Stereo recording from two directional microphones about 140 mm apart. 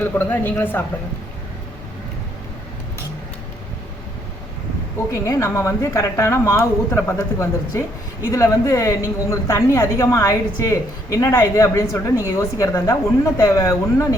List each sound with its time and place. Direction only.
0.0 s speech: 15° left (ahead or behind)
5.1 s speech: 20° left (ahead or behind)